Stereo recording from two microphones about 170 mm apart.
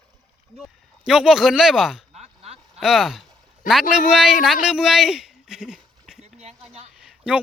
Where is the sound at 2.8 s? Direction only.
Centre (ahead or behind).